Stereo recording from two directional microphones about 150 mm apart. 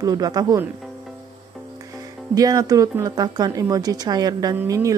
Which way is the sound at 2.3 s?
25° right (ahead or behind).